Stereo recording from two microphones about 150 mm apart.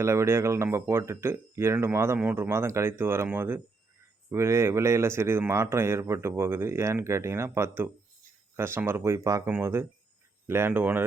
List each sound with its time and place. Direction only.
0.0 s speech: 20° right (ahead or behind)